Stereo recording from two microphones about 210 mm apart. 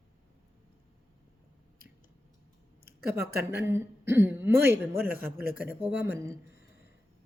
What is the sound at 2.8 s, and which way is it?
Speech, 45° right (ahead or behind).